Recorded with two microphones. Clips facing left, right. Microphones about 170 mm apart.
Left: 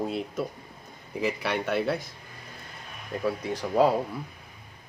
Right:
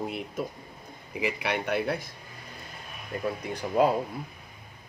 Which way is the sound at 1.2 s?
15° right (ahead or behind).